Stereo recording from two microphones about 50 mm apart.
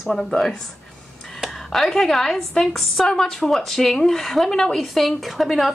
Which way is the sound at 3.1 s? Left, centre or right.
Centre.